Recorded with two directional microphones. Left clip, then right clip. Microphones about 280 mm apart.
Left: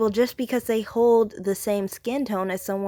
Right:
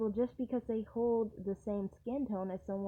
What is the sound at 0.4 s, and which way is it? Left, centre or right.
A woman's voice, left.